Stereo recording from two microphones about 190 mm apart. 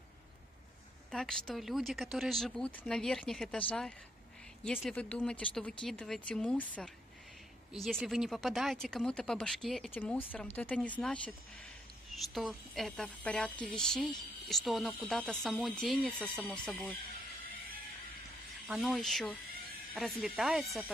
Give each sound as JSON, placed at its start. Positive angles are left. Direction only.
{"t": 1.1, "sound": "speech", "side_deg": 5}
{"t": 4.6, "sound": "speech", "side_deg": 0}
{"t": 18.7, "sound": "speech", "side_deg": 0}